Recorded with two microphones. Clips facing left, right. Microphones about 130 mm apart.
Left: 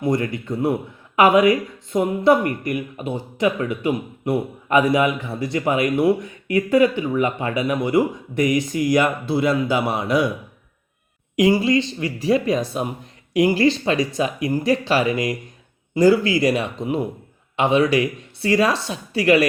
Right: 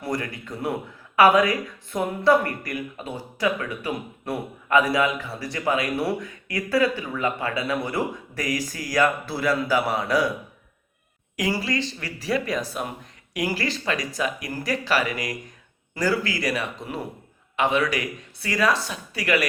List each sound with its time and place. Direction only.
0.0 s speech: 20° left (ahead or behind)
11.3 s speech: 20° left (ahead or behind)